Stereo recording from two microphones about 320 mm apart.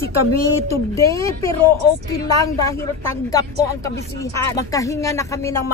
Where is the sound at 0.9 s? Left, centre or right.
Centre.